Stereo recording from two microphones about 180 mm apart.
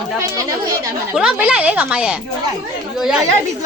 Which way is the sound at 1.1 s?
5° right (ahead or behind).